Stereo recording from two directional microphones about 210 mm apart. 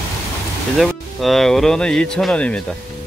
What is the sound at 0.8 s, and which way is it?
Speech, centre (ahead or behind).